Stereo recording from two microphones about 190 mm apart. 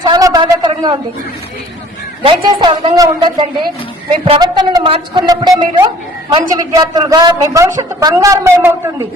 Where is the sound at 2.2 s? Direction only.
20° right (ahead or behind).